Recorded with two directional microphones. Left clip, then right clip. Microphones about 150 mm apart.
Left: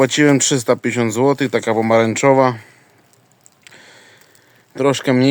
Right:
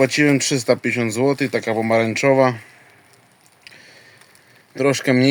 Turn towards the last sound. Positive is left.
turn(degrees=10)  # may be behind; listen again after turning